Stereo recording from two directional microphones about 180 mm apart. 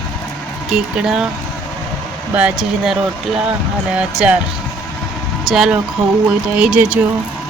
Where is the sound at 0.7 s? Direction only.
5° right (ahead or behind).